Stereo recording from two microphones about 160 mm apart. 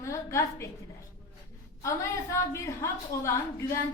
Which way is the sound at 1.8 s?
20° left (ahead or behind).